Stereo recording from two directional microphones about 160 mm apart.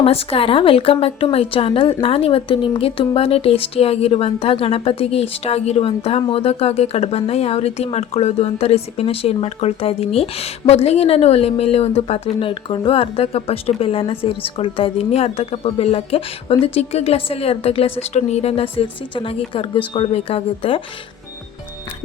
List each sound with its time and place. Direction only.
0.0 s speech: 40° left (ahead or behind)